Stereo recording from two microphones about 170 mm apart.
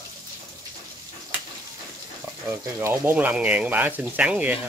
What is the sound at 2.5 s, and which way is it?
Speech, 15° right (ahead or behind).